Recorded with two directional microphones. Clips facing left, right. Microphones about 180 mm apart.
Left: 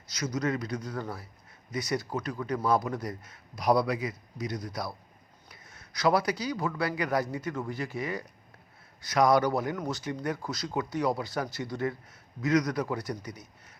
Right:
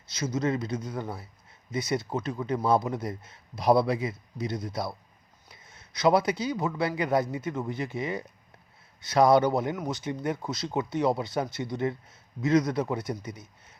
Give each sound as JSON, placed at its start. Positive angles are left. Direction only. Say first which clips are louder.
{"t": 0.1, "sound": "speech", "louder": "right 2 dB", "side_deg": -25}